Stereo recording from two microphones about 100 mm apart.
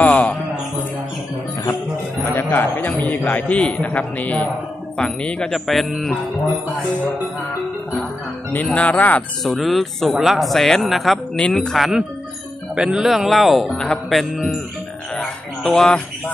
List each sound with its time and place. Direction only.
0.0 s a sound: 15° left (ahead or behind)
2.2 s a man's voice: 20° left (ahead or behind); by 6.1 s centre (ahead or behind)
8.5 s a man's voice: 15° left (ahead or behind)
9.4 s speech: centre (ahead or behind)
11.3 s speech: 10° left (ahead or behind)
13.7 s a man's voice: 10° left (ahead or behind)
15.1 s a sound: 5° left (ahead or behind)